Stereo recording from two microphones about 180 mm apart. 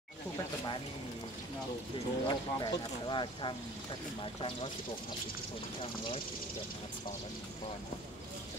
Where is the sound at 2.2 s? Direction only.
25° left (ahead or behind).